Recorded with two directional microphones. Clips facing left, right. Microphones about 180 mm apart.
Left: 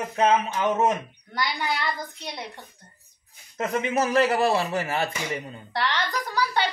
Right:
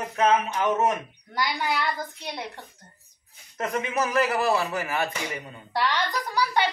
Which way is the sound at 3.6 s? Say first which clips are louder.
Left 2 dB; 25° left (ahead or behind).